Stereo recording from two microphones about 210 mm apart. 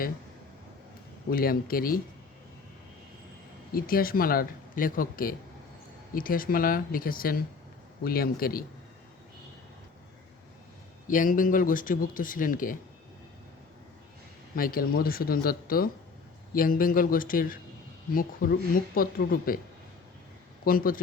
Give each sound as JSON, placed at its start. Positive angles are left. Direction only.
{"t": 1.3, "sound": "speech", "side_deg": 45}
{"t": 3.8, "sound": "speech", "side_deg": 45}
{"t": 11.1, "sound": "speech", "side_deg": 40}
{"t": 14.5, "sound": "speech", "side_deg": 45}
{"t": 20.7, "sound": "speech", "side_deg": 45}